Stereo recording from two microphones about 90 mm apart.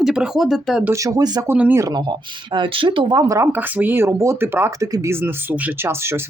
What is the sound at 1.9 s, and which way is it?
Speech, 55° right (ahead or behind).